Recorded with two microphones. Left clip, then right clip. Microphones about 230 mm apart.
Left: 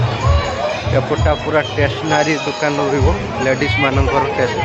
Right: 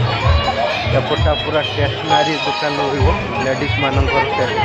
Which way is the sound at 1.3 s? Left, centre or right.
Centre.